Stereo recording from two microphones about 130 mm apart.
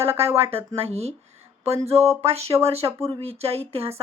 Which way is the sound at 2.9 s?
20° right (ahead or behind).